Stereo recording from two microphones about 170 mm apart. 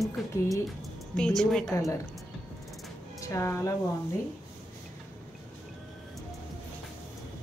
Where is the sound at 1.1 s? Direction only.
5° left (ahead or behind).